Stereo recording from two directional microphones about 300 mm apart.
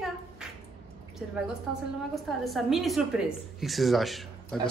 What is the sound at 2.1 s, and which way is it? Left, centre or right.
A woman's voice, centre.